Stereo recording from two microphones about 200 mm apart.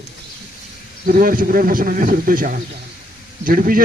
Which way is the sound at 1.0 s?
45° right (ahead or behind).